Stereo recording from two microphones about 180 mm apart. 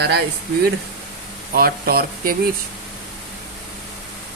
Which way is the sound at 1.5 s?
55° right (ahead or behind).